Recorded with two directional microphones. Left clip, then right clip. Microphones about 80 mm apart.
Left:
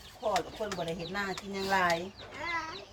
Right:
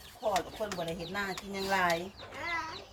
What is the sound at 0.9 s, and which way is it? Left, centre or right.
Speech, centre.